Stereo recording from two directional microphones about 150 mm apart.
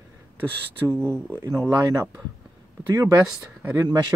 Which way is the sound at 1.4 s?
20° right (ahead or behind).